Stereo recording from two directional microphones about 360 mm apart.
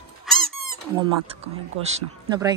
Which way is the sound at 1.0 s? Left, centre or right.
Centre.